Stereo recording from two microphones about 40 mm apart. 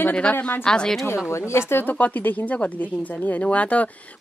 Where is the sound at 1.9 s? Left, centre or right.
Left.